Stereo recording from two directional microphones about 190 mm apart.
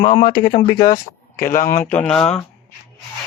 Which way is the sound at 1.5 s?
45° left (ahead or behind).